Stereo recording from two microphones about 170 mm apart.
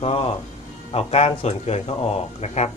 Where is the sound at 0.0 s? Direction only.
35° left (ahead or behind).